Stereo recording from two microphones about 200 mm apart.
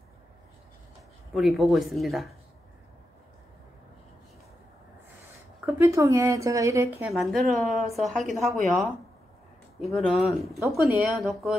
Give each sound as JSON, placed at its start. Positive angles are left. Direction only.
{"t": 1.3, "sound": "speech", "side_deg": 0}
{"t": 5.8, "sound": "a woman's voice", "side_deg": -15}
{"t": 7.1, "sound": "speech", "side_deg": 0}
{"t": 9.9, "sound": "speech", "side_deg": 0}
{"t": 10.6, "sound": "a woman's voice", "side_deg": -10}
{"t": 11.1, "sound": "speech", "side_deg": 0}